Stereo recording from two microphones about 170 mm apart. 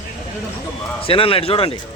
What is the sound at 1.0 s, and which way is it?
Speech, 35° left (ahead or behind).